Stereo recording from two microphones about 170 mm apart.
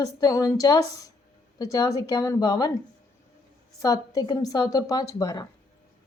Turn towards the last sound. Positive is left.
turn(degrees=20)  # may be behind; listen again after turning